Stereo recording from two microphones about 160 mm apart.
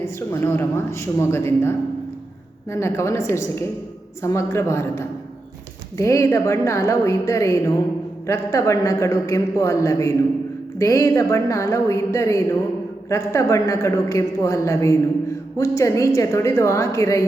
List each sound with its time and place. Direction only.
0.0 s a woman's voice: 15° left (ahead or behind)